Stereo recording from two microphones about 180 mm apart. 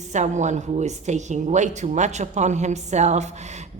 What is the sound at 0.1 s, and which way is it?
A woman's voice, 40° right (ahead or behind).